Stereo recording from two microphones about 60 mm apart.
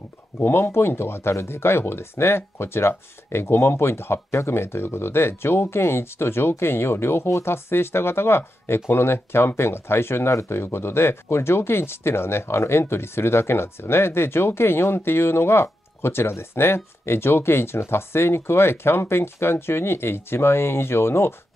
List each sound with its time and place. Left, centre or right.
0.4 s speech: left